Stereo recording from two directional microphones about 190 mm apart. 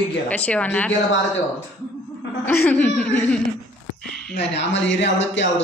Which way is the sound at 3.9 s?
5° left (ahead or behind).